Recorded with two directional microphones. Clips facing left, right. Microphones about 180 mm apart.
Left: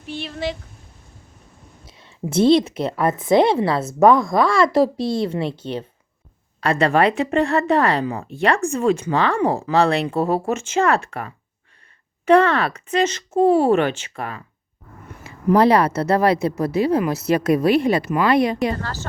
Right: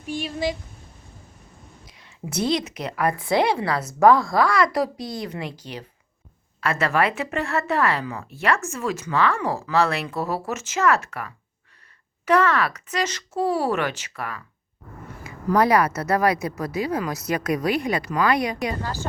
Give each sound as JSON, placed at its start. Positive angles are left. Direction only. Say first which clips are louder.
{"t": 0.0, "sound": "speech", "louder": "right 1 dB", "side_deg": -10}
{"t": 1.8, "sound": "a woman's voice", "louder": "left 8 dB", "side_deg": 25}
{"t": 18.6, "sound": "speech", "louder": "left 4 dB", "side_deg": -15}